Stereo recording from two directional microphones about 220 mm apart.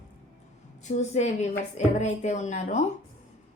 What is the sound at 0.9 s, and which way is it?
A woman's voice, 30° left (ahead or behind).